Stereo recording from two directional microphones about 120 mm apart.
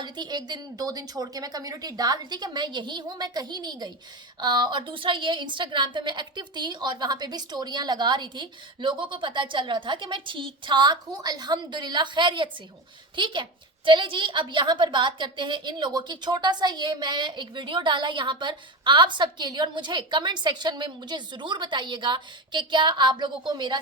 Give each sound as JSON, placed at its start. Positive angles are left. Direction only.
{"t": 0.0, "sound": "a woman's voice", "side_deg": -35}